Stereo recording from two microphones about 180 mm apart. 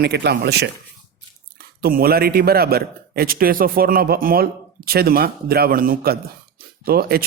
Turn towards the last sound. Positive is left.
turn(degrees=-55)  # may be behind; listen again after turning